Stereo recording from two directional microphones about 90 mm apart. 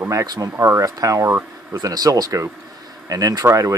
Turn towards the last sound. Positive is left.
turn(degrees=-35)  # may be behind; listen again after turning